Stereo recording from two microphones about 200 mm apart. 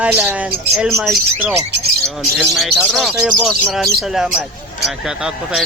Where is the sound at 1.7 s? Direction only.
60° right (ahead or behind).